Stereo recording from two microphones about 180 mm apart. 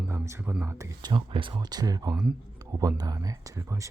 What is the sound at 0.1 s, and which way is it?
Speech, 15° right (ahead or behind).